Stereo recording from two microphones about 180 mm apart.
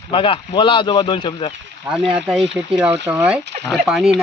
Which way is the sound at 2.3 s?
5° right (ahead or behind).